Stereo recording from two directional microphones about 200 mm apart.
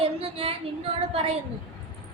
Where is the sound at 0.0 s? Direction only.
30° right (ahead or behind).